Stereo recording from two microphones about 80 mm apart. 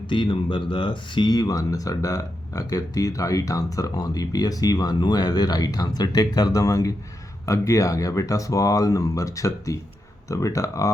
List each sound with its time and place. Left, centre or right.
0.1 s speech: left